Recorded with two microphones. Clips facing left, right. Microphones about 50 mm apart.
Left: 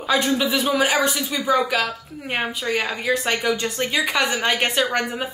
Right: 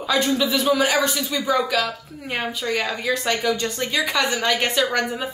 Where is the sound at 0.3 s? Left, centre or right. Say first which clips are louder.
Right 1 dB; left.